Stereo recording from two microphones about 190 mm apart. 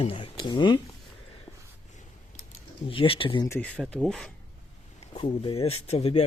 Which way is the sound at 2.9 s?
30° left (ahead or behind).